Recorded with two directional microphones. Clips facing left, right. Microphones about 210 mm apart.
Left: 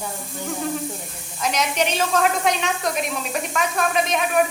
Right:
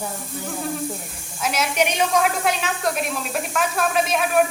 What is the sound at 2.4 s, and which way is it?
Speech, centre (ahead or behind).